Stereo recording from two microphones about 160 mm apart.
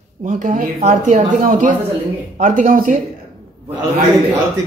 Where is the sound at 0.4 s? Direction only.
50° right (ahead or behind).